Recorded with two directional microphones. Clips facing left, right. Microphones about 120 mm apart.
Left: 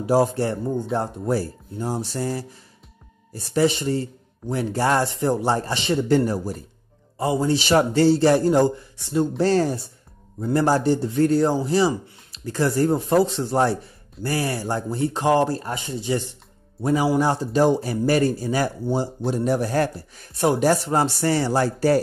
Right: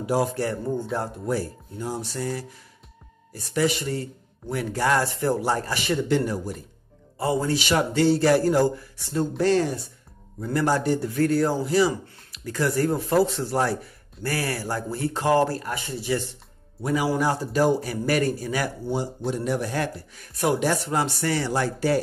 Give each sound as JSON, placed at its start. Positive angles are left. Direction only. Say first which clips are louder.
{"t": 0.0, "sound": "a man's voice", "louder": "left 4 dB", "side_deg": 30}
{"t": 6.0, "sound": "speech", "louder": "left 4 dB", "side_deg": 40}
{"t": 7.2, "sound": "a man's voice", "louder": "left 3 dB", "side_deg": 20}
{"t": 7.5, "sound": "a man's voice", "louder": "left 4 dB", "side_deg": 35}
{"t": 9.4, "sound": "a man's voice", "louder": "even", "side_deg": 35}